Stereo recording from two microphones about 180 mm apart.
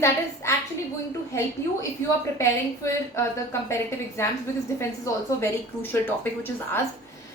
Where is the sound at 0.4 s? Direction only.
15° left (ahead or behind).